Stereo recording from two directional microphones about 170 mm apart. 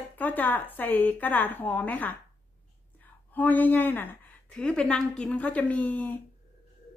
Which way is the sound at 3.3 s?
10° left (ahead or behind).